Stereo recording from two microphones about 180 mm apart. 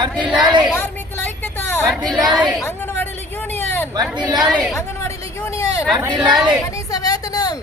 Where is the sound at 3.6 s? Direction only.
10° left (ahead or behind).